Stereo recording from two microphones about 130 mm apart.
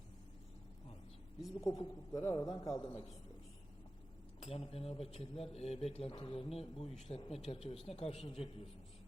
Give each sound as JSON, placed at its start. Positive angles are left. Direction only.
{"t": 1.6, "sound": "a man's voice", "side_deg": 30}
{"t": 4.4, "sound": "speech", "side_deg": 50}